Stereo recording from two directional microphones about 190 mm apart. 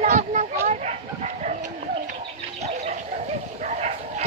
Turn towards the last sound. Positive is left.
turn(degrees=-35)  # may be behind; listen again after turning